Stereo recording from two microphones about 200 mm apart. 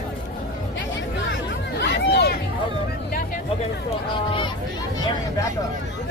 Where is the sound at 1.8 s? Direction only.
55° left (ahead or behind).